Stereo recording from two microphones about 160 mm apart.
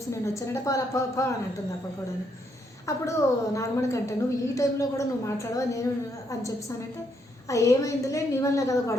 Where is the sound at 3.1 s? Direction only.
20° left (ahead or behind).